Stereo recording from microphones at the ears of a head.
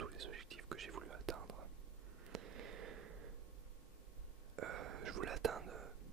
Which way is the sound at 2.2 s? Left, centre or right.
Right.